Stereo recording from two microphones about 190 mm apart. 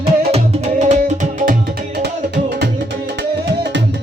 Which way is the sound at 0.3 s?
35° right (ahead or behind).